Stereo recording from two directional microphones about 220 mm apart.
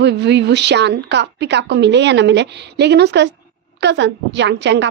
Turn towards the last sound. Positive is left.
turn(degrees=-55)  # may be behind; listen again after turning